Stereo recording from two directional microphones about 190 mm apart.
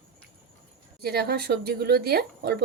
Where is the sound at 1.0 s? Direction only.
55° right (ahead or behind).